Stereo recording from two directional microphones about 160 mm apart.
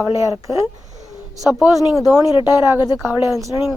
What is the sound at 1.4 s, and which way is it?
Speech, centre (ahead or behind).